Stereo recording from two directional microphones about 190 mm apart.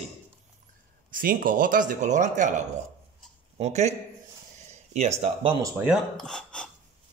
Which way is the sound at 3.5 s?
35° right (ahead or behind).